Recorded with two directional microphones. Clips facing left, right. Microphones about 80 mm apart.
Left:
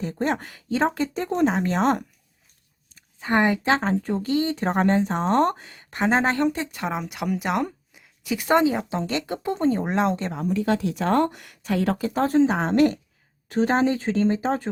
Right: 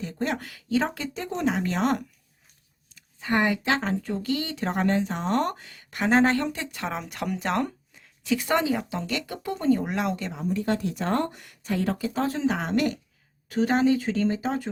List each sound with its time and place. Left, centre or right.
0.0 s speech: left
6.9 s speech: centre; by 10.3 s left
10.8 s speech: left
11.9 s speech: left